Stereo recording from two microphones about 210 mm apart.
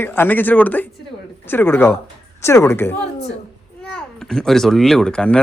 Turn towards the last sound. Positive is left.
turn(degrees=5)  # may be behind; listen again after turning